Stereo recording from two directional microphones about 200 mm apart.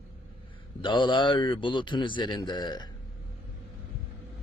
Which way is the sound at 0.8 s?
25° left (ahead or behind).